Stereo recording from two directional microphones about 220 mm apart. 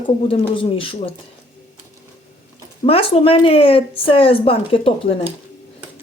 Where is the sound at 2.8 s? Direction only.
25° left (ahead or behind).